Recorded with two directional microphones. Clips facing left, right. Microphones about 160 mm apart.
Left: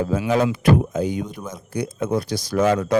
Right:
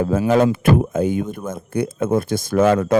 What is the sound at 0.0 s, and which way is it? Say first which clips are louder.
A man's voice: right 4 dB; 50° right (ahead or behind).